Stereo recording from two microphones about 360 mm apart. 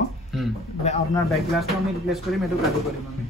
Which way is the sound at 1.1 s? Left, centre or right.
Centre.